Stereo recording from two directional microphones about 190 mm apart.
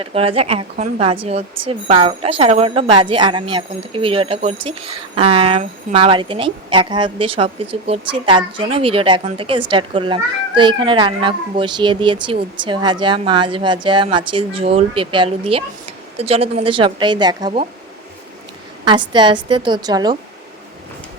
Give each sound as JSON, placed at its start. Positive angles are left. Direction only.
{"t": 0.0, "sound": "a woman's voice", "side_deg": -30}
{"t": 18.9, "sound": "a woman's voice", "side_deg": -25}